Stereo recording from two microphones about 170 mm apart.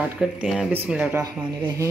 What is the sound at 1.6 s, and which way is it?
Speech, 25° right (ahead or behind).